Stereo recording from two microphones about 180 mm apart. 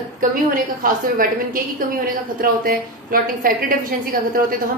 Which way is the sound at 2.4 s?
50° right (ahead or behind).